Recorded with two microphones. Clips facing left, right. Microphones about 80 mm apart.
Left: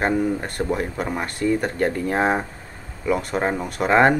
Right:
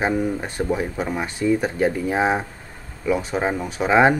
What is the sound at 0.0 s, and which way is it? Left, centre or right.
Speech, centre.